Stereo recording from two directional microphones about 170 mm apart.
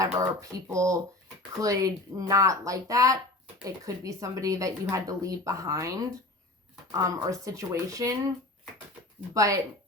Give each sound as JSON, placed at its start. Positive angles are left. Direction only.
{"t": 0.0, "sound": "speech", "side_deg": -20}
{"t": 9.3, "sound": "speech", "side_deg": -20}